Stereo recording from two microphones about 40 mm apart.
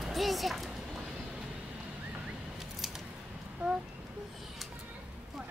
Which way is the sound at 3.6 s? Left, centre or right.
Right.